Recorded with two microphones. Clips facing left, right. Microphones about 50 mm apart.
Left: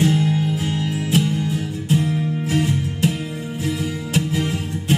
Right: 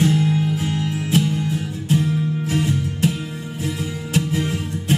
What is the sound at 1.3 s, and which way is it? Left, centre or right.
Music, right.